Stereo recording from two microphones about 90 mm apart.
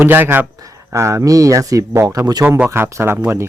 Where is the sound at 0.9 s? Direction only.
35° right (ahead or behind).